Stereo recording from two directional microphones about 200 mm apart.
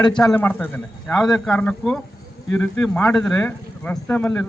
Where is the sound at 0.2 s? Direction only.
5° left (ahead or behind).